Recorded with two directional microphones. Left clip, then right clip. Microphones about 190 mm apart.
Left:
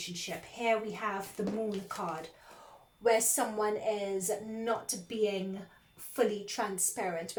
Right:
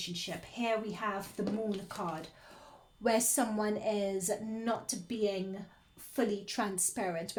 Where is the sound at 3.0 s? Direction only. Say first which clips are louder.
Left 2 dB; 40° right (ahead or behind).